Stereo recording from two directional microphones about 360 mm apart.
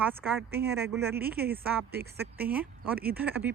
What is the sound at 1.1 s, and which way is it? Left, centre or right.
Speech, right.